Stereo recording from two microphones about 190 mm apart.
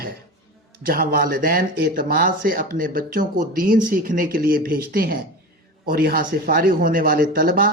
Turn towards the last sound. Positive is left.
turn(degrees=-50)  # may be behind; listen again after turning